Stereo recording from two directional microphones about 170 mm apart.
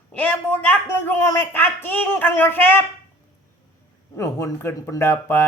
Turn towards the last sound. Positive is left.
turn(degrees=15)  # may be behind; listen again after turning